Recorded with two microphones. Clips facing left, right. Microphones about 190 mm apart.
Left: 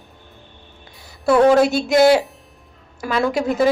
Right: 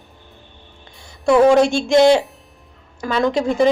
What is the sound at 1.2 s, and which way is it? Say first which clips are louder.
A woman's voice: right 1 dB; 5° left (ahead or behind).